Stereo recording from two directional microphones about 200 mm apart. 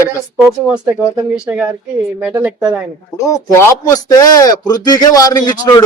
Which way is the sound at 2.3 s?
5° right (ahead or behind).